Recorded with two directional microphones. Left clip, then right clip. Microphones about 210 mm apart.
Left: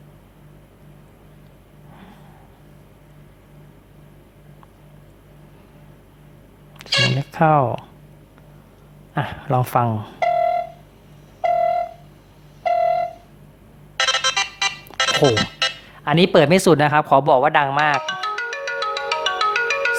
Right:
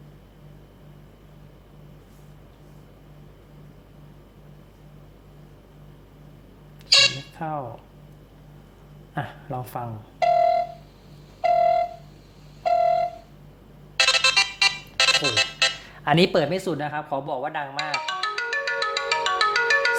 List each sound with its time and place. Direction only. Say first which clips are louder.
7.3 s speech: left 15 dB; 45° left (ahead or behind)
9.1 s speech: left 6 dB; 25° left (ahead or behind)
9.5 s speech: left 13 dB; 40° left (ahead or behind)
10.2 s pulse: even; centre (ahead or behind)
11.3 s a sound: left 1 dB; centre (ahead or behind)
13.9 s music: even; centre (ahead or behind)
16.0 s speech: left 4 dB; 10° left (ahead or behind)
16.4 s speech: left 11 dB; 30° left (ahead or behind)
18.0 s ringtone: left 2 dB; centre (ahead or behind)